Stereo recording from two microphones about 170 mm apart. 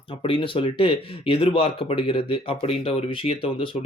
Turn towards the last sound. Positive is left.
turn(degrees=30)  # may be behind; listen again after turning